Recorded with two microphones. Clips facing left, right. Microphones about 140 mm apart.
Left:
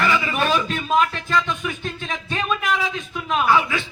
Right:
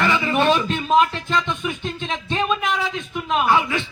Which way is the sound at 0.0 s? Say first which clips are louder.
Right 2 dB; 30° right (ahead or behind).